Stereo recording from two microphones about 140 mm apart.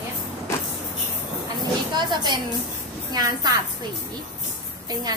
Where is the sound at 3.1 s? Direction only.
30° right (ahead or behind).